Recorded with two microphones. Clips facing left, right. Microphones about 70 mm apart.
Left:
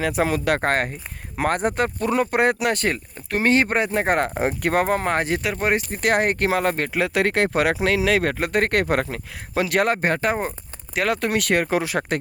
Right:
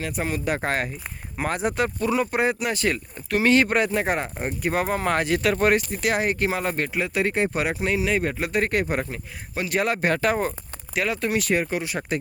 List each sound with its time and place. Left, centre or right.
0.1 s speech: left
0.6 s speech: left
2.8 s speech: left
4.0 s speech: left
4.4 s speech: left
4.7 s speech: left
5.0 s speech: left
5.4 s speech: centre
5.7 s speech: left
9.8 s speech: left
10.9 s speech: left